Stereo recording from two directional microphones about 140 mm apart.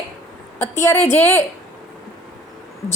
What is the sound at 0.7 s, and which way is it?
Speech, 15° left (ahead or behind).